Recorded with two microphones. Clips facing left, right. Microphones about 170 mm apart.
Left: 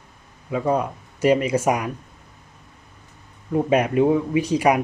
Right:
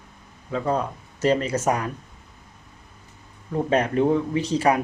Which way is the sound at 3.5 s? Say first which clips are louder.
Left 3 dB; 10° left (ahead or behind).